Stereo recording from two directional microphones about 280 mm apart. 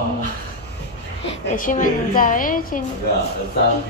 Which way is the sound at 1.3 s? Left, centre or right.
Left.